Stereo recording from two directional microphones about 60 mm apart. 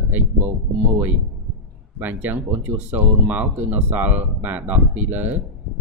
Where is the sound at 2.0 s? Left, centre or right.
Right.